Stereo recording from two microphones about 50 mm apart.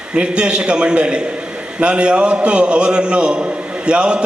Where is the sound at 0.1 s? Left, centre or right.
Right.